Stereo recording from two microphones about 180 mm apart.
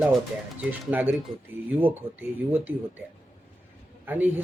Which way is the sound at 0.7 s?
10° right (ahead or behind).